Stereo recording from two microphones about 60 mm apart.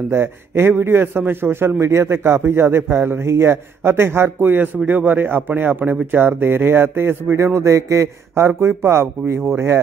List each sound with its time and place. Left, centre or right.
0.1 s a man's voice: right
7.3 s a man's voice: right
8.5 s speech: right